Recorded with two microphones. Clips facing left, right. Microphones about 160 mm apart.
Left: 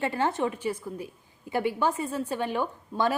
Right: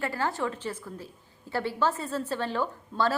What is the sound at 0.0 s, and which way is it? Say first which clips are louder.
A woman's voice: left 3 dB; 20° left (ahead or behind).